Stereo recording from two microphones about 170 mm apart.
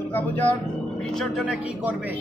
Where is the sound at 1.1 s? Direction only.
Centre (ahead or behind).